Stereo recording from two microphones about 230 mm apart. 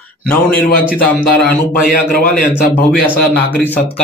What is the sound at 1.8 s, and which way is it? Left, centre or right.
Speech, left.